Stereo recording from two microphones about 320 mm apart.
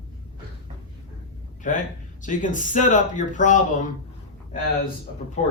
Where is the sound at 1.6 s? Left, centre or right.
Left.